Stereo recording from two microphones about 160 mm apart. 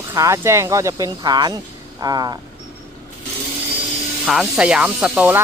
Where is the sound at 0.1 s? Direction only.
20° right (ahead or behind).